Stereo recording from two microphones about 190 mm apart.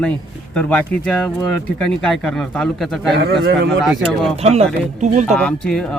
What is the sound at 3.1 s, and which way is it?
Speech, 60° right (ahead or behind).